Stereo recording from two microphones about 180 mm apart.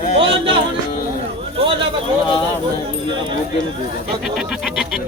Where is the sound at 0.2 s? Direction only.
30° right (ahead or behind).